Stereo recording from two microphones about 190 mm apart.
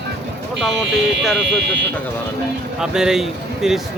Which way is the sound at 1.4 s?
65° right (ahead or behind).